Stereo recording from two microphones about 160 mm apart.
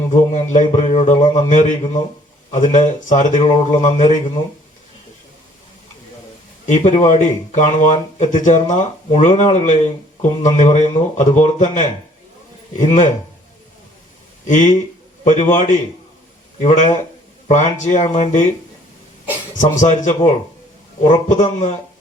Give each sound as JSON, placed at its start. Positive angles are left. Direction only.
{"t": 0.1, "sound": "speech", "side_deg": 45}
{"t": 6.7, "sound": "speech", "side_deg": 50}
{"t": 14.4, "sound": "speech", "side_deg": 50}
{"t": 19.5, "sound": "speech", "side_deg": 50}